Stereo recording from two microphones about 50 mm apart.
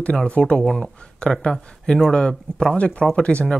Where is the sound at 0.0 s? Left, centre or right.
Left.